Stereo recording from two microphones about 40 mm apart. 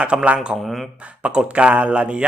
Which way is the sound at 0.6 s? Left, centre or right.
Centre.